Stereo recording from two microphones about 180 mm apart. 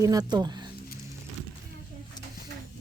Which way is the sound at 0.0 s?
20° right (ahead or behind).